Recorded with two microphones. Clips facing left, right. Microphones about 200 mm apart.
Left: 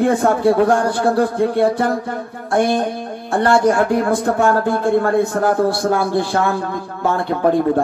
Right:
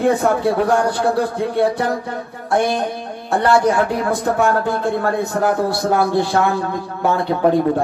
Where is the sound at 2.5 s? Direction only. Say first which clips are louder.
Left 1 dB; 55° left (ahead or behind).